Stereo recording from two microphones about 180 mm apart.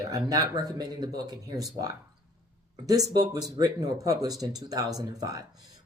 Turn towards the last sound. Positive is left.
turn(degrees=-20)  # may be behind; listen again after turning